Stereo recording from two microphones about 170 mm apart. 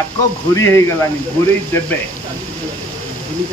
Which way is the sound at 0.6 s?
15° left (ahead or behind).